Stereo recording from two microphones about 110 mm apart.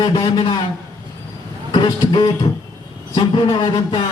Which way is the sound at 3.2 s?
45° left (ahead or behind).